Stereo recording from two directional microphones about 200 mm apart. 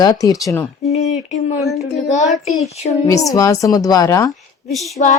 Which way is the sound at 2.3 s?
Centre (ahead or behind).